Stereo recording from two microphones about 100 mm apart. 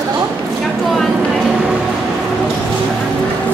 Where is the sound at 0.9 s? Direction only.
Centre (ahead or behind).